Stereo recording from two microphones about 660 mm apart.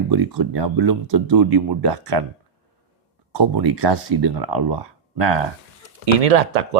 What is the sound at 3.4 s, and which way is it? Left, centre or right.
Speech, right.